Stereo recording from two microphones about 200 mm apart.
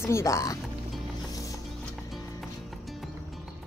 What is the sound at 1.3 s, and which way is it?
Music, 15° left (ahead or behind).